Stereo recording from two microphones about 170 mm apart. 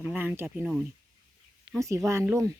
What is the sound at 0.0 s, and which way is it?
Speech, 10° right (ahead or behind).